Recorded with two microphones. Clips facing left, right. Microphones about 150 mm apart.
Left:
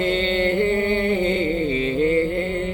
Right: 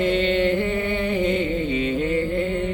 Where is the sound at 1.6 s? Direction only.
35° left (ahead or behind).